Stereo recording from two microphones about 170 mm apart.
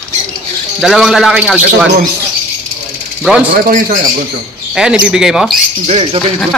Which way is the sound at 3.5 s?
50° right (ahead or behind).